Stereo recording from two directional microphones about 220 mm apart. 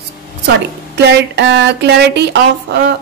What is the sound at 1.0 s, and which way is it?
A woman's voice, 50° right (ahead or behind).